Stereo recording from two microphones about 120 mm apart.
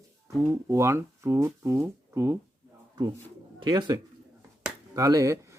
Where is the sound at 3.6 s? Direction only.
40° right (ahead or behind).